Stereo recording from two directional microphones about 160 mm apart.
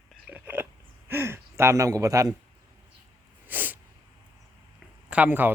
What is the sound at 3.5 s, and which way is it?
Sneeze, 10° right (ahead or behind).